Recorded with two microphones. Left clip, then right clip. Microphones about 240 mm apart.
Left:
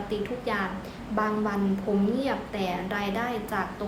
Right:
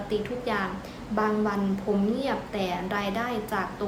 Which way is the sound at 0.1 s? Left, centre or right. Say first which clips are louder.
Right 2 dB; centre.